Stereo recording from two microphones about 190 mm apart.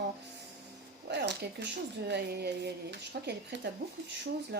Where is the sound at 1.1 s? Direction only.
60° right (ahead or behind).